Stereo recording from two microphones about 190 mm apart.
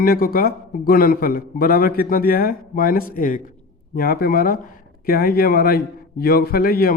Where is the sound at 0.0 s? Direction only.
50° left (ahead or behind).